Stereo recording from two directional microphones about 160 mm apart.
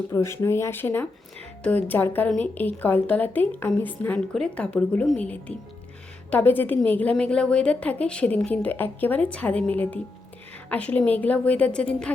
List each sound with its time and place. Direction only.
0.1 s a woman's voice: 15° left (ahead or behind)